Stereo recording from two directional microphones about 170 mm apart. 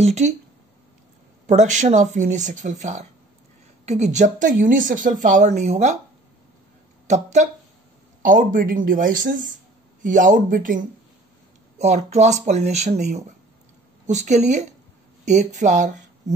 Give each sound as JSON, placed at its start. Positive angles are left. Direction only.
{"t": 0.0, "sound": "speech", "side_deg": -40}
{"t": 1.5, "sound": "speech", "side_deg": -45}
{"t": 7.1, "sound": "speech", "side_deg": -45}
{"t": 11.8, "sound": "speech", "side_deg": -40}